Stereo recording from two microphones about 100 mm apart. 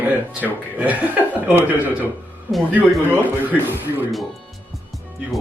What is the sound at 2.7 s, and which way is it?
Speech, 15° right (ahead or behind).